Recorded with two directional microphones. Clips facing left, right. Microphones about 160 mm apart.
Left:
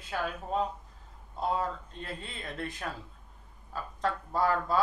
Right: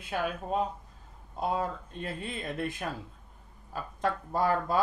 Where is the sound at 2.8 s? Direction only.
25° right (ahead or behind).